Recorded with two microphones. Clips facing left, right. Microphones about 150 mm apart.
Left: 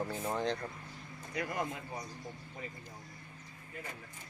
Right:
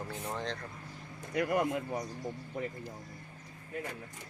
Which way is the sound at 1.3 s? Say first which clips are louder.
Right 7 dB; 60° right (ahead or behind).